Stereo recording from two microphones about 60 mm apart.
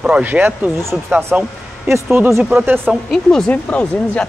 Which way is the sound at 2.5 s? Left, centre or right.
Right.